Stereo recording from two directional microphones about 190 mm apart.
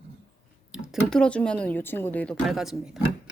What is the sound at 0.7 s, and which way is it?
Speech, 5° right (ahead or behind).